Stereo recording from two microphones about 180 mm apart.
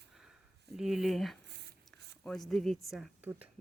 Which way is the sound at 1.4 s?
65° right (ahead or behind).